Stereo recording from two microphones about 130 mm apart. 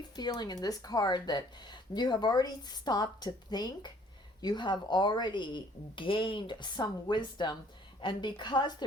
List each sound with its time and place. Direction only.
0.2 s speech: 35° left (ahead or behind)